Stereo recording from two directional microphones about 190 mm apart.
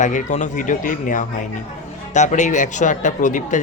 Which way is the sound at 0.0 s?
40° left (ahead or behind).